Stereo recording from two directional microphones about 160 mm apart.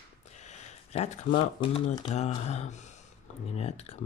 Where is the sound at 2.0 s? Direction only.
45° left (ahead or behind).